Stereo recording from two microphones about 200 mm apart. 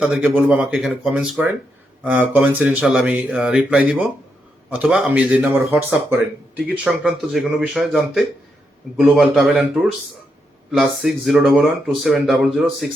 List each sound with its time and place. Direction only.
0.0 s speech: 5° right (ahead or behind)